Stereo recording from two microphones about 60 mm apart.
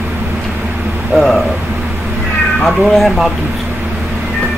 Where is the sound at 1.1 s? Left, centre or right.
Centre.